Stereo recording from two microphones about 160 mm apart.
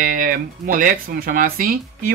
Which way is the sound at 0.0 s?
60° right (ahead or behind).